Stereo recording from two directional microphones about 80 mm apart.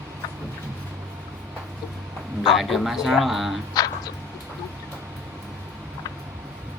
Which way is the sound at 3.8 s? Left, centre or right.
Left.